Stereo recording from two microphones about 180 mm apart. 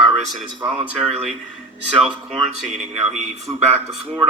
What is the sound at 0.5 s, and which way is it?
Speech, 30° right (ahead or behind).